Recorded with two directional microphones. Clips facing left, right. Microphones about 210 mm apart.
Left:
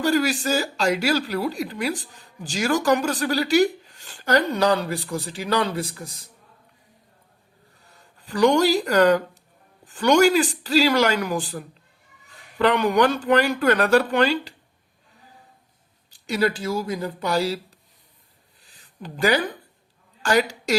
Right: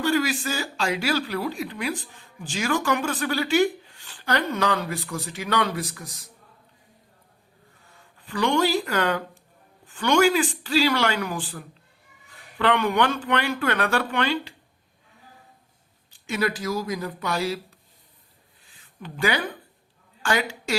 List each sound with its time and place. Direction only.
0.0 s speech: 40° left (ahead or behind)
7.9 s speech: 40° left (ahead or behind)
16.0 s speech: 35° left (ahead or behind)
18.7 s a sound: 40° left (ahead or behind)
20.2 s a woman's voice: 40° left (ahead or behind)